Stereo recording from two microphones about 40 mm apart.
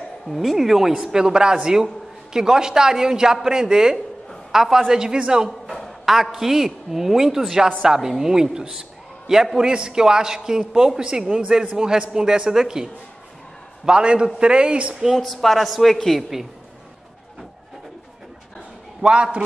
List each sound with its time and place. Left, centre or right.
0.3 s speech: centre
1.0 s a man's voice: centre
5.5 s a woman's voice: centre
13.8 s a man's voice: right
15.1 s speech: centre
18.9 s a man's voice: right